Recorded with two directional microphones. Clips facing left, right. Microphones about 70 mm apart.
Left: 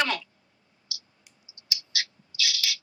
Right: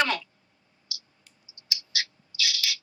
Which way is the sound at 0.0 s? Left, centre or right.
Right.